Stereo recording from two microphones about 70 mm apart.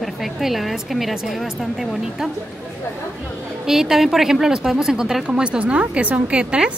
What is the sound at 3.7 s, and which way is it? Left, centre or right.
A woman's voice, centre.